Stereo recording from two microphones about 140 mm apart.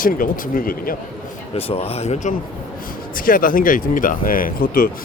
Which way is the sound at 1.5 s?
45° left (ahead or behind).